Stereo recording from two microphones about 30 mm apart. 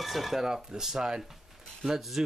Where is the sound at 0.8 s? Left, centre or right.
Centre.